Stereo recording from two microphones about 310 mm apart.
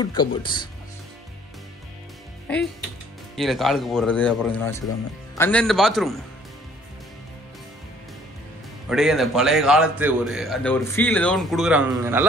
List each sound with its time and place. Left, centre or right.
0.0 s speech: centre
2.4 s a man's voice: centre
8.8 s a man's voice: centre